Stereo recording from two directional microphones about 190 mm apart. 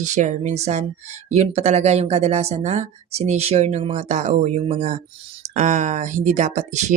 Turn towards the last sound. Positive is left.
turn(degrees=-40)  # may be behind; listen again after turning